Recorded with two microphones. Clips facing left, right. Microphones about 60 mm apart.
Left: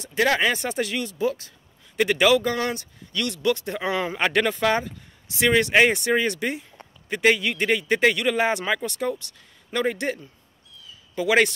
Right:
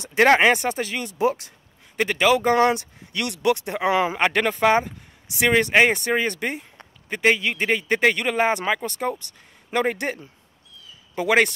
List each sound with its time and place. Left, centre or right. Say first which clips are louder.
0.2 s speech: right 5 dB; right
0.6 s speech: right 1 dB; centre
2.3 s speech: right 4 dB; right
3.2 s a man's voice: right 2 dB; centre
4.6 s a man's voice: right 4 dB; centre
11.2 s speech: right 1 dB; centre